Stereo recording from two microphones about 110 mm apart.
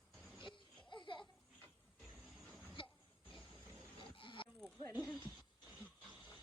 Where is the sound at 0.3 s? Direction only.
45° left (ahead or behind).